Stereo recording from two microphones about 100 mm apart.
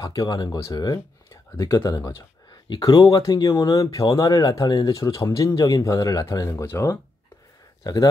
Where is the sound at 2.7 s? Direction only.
50° left (ahead or behind); by 7.0 s 25° left (ahead or behind).